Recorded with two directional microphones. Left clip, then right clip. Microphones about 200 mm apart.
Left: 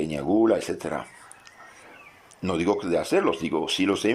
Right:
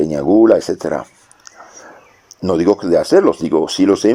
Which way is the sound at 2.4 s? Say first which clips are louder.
Right 11 dB; 25° right (ahead or behind).